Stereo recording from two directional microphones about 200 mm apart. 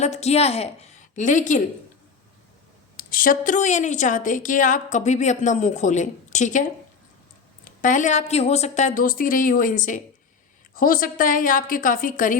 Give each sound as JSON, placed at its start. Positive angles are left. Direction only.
{"t": 0.0, "sound": "a woman's voice", "side_deg": 35}
{"t": 3.0, "sound": "a woman's voice", "side_deg": 45}